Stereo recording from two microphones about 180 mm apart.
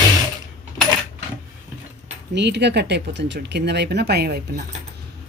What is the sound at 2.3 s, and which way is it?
Speech, 70° right (ahead or behind).